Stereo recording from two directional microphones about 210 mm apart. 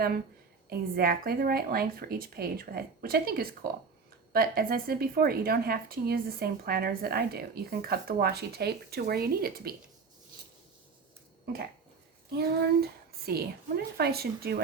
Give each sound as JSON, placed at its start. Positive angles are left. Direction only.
{"t": 0.7, "sound": "a woman's voice", "side_deg": -45}
{"t": 12.4, "sound": "a woman's voice", "side_deg": -50}